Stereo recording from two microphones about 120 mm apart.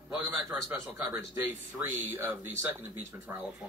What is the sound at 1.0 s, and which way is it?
Speech, 25° right (ahead or behind).